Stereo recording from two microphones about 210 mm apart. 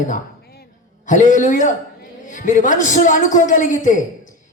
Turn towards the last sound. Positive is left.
turn(degrees=35)  # may be behind; listen again after turning